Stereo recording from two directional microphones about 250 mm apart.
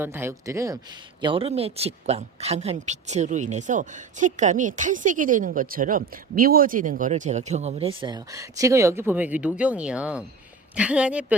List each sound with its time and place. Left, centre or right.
0.0 s a woman's voice: centre